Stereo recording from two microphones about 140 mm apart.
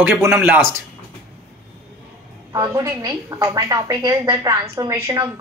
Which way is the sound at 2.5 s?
25° right (ahead or behind).